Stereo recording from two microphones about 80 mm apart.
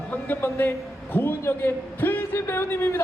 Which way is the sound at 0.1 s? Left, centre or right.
Left.